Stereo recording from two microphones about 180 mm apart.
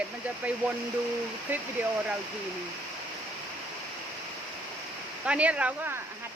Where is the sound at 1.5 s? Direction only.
10° right (ahead or behind).